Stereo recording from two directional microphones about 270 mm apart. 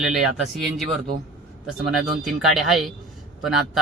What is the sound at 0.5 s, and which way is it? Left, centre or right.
Speech, centre.